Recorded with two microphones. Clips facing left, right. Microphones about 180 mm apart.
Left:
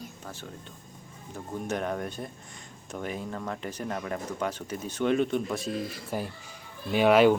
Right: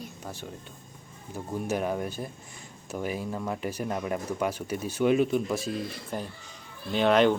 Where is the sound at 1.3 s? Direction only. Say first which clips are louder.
Right 2 dB; 5° right (ahead or behind).